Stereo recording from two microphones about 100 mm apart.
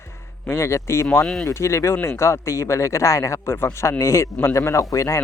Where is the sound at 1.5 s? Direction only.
30° left (ahead or behind).